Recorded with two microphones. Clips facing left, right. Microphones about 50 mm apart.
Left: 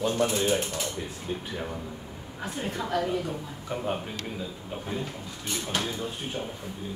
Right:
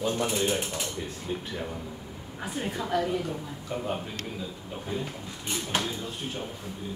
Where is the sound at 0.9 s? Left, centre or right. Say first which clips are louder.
Even; centre.